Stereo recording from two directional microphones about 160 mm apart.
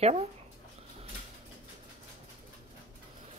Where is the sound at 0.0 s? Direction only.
40° right (ahead or behind).